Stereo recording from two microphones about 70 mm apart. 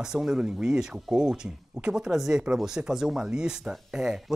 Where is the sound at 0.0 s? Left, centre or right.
Centre.